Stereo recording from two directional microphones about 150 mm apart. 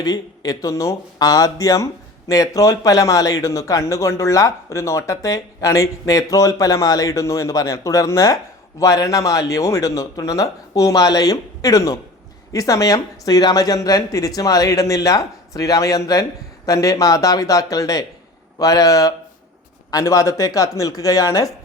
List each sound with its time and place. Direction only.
0.0 s speech: 25° left (ahead or behind)